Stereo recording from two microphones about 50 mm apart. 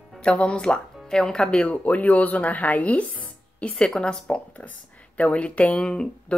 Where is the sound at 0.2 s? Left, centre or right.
Left.